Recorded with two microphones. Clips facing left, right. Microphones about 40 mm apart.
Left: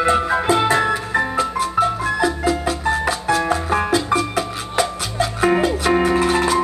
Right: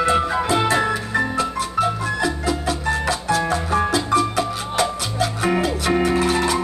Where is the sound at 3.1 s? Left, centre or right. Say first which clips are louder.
Even; left.